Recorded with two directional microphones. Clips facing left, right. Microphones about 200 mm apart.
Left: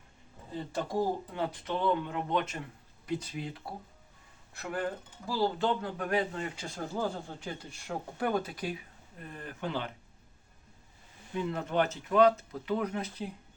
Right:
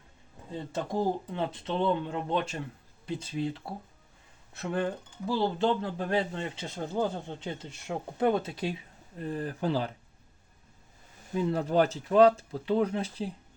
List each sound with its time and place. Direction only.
0.7 s speech: 25° right (ahead or behind)
11.3 s speech: 35° right (ahead or behind)